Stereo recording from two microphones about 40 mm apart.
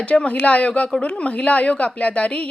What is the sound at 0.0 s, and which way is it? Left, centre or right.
A woman's voice, left.